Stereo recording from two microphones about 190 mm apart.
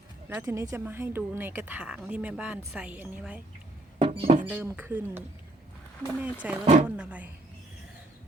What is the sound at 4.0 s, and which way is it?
Music, 30° right (ahead or behind).